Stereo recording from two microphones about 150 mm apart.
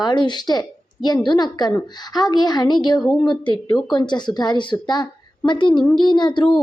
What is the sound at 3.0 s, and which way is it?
Speech, 5° left (ahead or behind).